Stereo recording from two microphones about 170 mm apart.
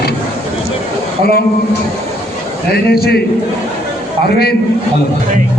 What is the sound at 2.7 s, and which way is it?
Speech, 65° left (ahead or behind).